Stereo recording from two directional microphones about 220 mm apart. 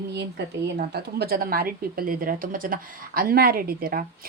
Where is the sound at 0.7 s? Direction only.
45° right (ahead or behind).